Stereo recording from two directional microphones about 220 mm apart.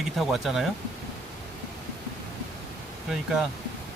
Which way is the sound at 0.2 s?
Centre (ahead or behind).